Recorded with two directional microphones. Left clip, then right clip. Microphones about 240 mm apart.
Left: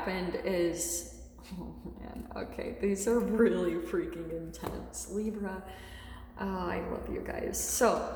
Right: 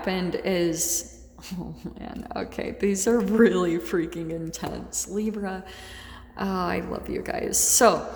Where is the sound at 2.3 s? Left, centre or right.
Right.